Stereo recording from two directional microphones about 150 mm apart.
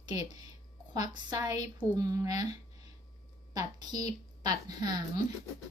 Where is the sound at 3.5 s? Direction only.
25° right (ahead or behind).